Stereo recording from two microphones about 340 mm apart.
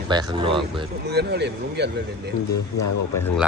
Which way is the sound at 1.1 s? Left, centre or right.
Right.